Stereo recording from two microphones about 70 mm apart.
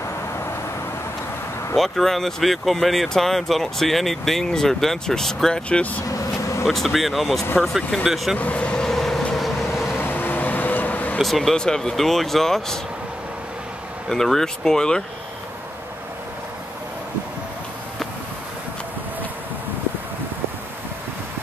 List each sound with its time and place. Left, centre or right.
1.8 s speech: centre
6.7 s speech: centre
8.4 s vehicle: centre
9.9 s vehicle: left
11.1 s speech: centre
14.0 s speech: centre